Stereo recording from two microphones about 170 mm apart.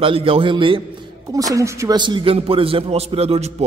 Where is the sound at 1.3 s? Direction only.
20° right (ahead or behind).